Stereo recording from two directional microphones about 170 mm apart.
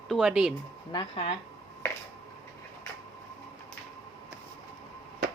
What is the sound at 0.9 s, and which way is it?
Speech, 30° left (ahead or behind).